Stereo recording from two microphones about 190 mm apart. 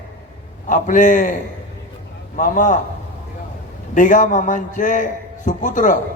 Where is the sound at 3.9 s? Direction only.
40° left (ahead or behind).